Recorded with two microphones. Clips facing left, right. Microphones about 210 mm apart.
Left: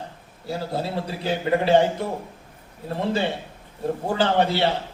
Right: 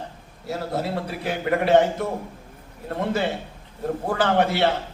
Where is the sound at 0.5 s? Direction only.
25° left (ahead or behind).